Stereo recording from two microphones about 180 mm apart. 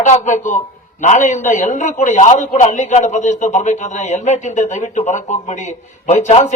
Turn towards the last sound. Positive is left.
turn(degrees=40)  # may be behind; listen again after turning